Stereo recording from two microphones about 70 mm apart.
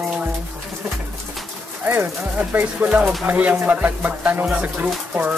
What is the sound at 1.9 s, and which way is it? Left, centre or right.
Speech, right.